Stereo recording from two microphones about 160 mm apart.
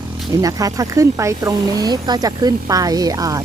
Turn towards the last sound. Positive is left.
turn(degrees=-20)  # may be behind; listen again after turning